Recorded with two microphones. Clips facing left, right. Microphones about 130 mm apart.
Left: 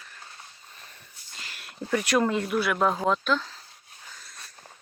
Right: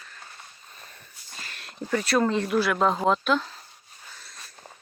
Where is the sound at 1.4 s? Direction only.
15° left (ahead or behind).